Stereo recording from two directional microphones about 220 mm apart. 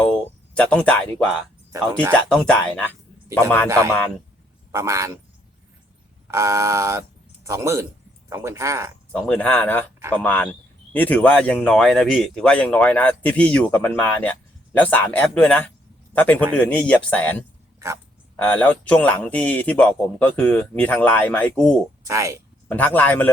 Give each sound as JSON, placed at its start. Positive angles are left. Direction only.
{"t": 0.0, "sound": "speech", "side_deg": 5}
{"t": 3.7, "sound": "speech", "side_deg": -15}
{"t": 6.3, "sound": "speech", "side_deg": -15}
{"t": 9.1, "sound": "a man's voice", "side_deg": 5}
{"t": 17.7, "sound": "a sound", "side_deg": -15}
{"t": 18.3, "sound": "a man's voice", "side_deg": 5}
{"t": 22.0, "sound": "speech", "side_deg": -15}
{"t": 22.7, "sound": "a man's voice", "side_deg": 10}